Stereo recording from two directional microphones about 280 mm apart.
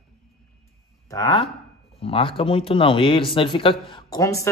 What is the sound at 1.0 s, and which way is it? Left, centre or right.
Speech, centre.